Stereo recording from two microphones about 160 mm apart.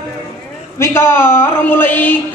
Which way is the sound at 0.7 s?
15° left (ahead or behind).